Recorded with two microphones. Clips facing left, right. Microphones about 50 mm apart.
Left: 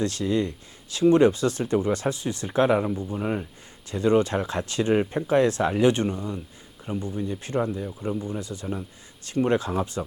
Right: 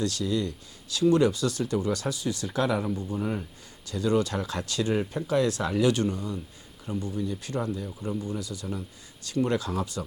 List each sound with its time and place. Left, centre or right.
0.0 s speech: left
2.9 s speech: left
8.4 s speech: left